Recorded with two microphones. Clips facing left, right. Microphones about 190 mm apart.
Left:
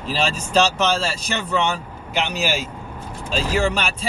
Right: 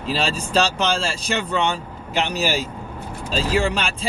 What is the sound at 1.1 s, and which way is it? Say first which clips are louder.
Speech: even; 30° right (ahead or behind).